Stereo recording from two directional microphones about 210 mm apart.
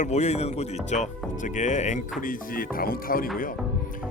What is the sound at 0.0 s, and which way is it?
Speech, 30° left (ahead or behind).